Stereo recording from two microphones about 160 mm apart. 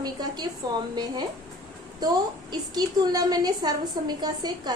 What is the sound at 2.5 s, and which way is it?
A woman's voice, 25° right (ahead or behind).